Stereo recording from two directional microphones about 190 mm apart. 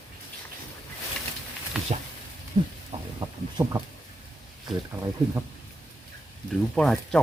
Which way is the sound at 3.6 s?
20° right (ahead or behind).